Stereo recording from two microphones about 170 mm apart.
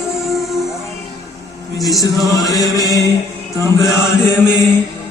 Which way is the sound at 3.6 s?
15° left (ahead or behind).